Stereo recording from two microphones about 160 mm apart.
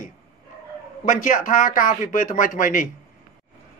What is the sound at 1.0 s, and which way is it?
A man's voice, 50° left (ahead or behind).